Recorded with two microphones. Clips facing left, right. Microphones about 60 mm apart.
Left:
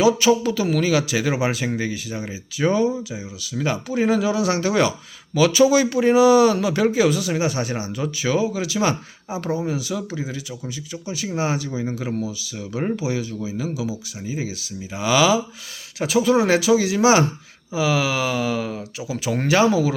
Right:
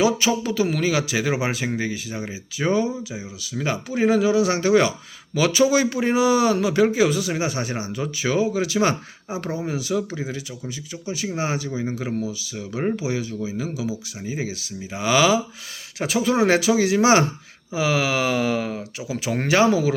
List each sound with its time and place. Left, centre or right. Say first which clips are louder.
0.3 s speech: left 3 dB; right